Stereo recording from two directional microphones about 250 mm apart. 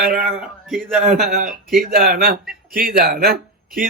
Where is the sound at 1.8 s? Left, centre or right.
Right.